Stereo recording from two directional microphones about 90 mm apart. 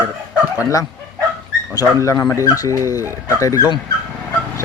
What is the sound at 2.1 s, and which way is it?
Speech, 35° left (ahead or behind).